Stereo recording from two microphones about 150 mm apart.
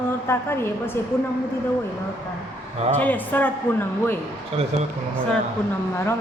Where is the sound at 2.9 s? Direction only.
10° left (ahead or behind).